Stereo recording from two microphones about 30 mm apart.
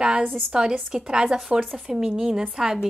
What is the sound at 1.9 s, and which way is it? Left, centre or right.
Speech, centre.